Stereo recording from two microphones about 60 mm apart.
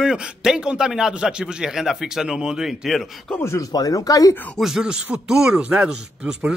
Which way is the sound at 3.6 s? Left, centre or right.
Left.